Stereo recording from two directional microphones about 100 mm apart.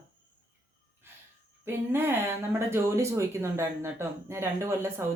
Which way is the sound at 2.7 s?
30° right (ahead or behind).